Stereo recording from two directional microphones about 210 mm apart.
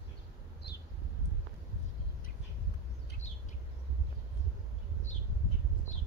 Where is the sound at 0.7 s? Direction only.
55° left (ahead or behind).